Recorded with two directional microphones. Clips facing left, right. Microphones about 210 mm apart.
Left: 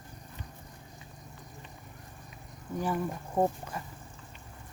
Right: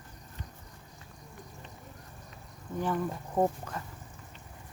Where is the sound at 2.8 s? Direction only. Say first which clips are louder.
Right 1 dB; 10° left (ahead or behind).